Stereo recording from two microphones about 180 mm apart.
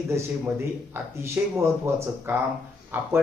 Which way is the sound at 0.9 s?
15° right (ahead or behind).